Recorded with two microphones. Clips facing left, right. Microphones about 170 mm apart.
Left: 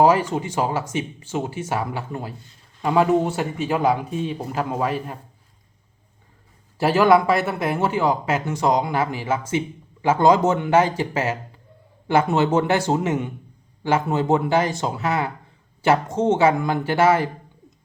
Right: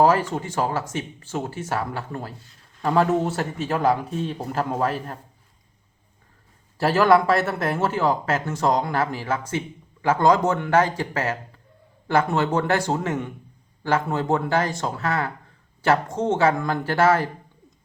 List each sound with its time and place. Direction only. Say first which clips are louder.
0.0 s speech: left 2 dB; 20° left (ahead or behind)
6.7 s speech: left 1 dB; 20° left (ahead or behind)